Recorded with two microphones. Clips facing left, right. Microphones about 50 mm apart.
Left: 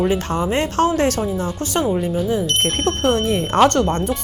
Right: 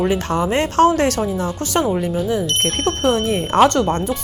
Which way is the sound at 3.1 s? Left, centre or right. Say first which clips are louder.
Even; right.